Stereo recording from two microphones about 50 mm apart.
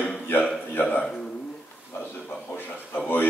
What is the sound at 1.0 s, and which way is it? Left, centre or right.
Speech, centre.